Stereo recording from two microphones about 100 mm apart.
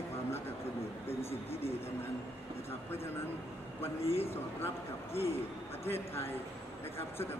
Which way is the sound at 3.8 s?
85° left.